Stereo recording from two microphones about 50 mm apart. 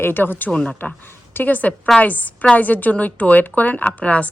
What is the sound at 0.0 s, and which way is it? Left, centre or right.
Speech, left.